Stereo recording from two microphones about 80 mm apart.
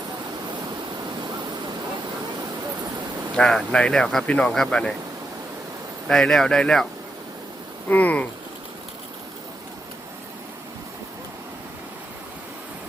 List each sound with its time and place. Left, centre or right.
3.3 s speech: centre
6.1 s speech: centre
7.9 s a sound: left